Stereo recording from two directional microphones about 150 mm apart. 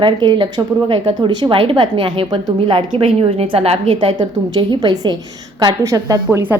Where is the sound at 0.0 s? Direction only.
30° right (ahead or behind).